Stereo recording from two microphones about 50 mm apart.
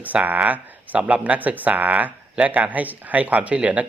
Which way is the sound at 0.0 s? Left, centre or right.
Right.